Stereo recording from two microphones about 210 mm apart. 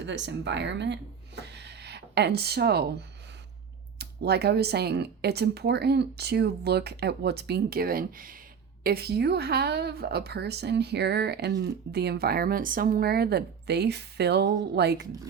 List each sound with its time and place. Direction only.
0.0 s speech: 55° right (ahead or behind)
1.4 s a sound: 55° right (ahead or behind)
3.9 s speech: 50° right (ahead or behind)